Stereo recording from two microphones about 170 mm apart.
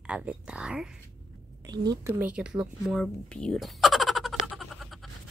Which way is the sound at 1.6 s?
20° right (ahead or behind).